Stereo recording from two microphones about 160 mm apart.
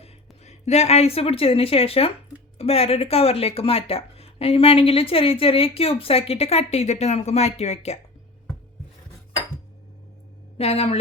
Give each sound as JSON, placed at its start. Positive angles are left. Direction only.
{"t": 0.0, "sound": "speech", "side_deg": 45}
{"t": 10.6, "sound": "speech", "side_deg": 40}